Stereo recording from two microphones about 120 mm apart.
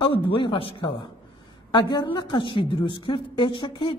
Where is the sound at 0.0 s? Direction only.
45° left (ahead or behind).